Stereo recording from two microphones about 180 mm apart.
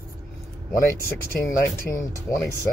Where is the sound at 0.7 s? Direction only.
15° left (ahead or behind).